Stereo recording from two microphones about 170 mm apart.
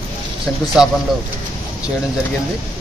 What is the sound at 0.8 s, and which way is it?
Speech, 5° right (ahead or behind).